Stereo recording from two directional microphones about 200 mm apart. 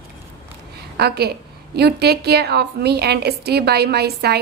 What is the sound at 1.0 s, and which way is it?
A woman's voice, 55° right (ahead or behind).